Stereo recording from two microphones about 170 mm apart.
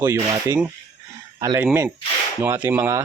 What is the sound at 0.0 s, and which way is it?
A man's voice, 15° right (ahead or behind).